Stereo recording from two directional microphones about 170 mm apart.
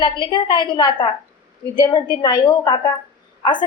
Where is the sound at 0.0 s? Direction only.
25° left (ahead or behind).